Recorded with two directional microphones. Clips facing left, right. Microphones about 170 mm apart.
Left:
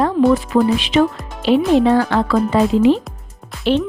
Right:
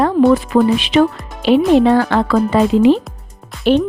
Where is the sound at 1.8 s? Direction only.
70° right (ahead or behind).